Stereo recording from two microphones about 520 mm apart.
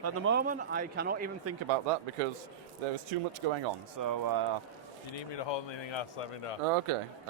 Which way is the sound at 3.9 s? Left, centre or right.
Right.